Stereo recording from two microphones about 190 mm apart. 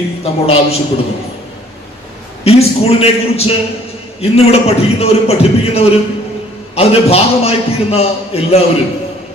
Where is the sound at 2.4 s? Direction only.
30° left (ahead or behind).